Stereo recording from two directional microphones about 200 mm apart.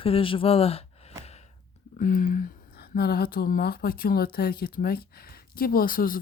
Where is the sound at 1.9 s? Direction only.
45° left (ahead or behind).